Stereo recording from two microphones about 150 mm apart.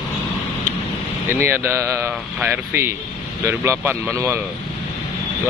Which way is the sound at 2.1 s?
5° right (ahead or behind).